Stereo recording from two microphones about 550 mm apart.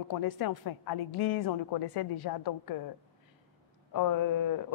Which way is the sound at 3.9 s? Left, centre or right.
Left.